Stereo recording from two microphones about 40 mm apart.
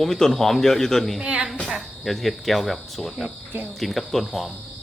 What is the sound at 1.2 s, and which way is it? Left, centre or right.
Speech, right.